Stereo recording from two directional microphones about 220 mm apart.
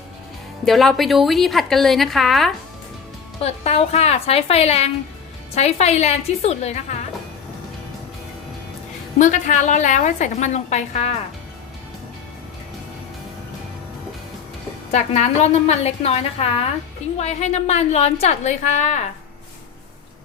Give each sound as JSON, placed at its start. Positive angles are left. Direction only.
{"t": 0.6, "sound": "a woman's voice", "side_deg": 0}
{"t": 3.4, "sound": "a woman's voice", "side_deg": 30}
{"t": 9.1, "sound": "a woman's voice", "side_deg": 35}
{"t": 14.9, "sound": "a woman's voice", "side_deg": 30}